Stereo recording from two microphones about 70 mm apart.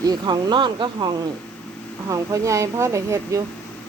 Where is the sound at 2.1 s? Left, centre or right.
Right.